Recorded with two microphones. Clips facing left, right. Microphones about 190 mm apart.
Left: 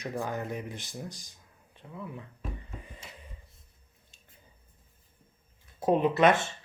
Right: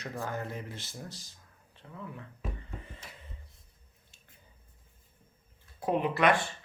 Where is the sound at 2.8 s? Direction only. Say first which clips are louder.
Left 1 dB; 15° left (ahead or behind).